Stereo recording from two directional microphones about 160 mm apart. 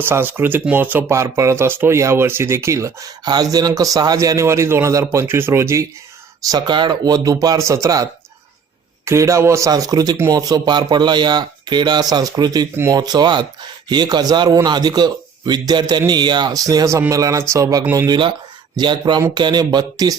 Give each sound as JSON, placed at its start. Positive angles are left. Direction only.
{"t": 0.0, "sound": "speech", "side_deg": -15}
{"t": 6.5, "sound": "speech", "side_deg": -30}
{"t": 9.0, "sound": "speech", "side_deg": -20}